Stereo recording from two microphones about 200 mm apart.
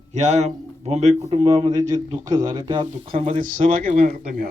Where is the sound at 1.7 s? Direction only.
20° right (ahead or behind).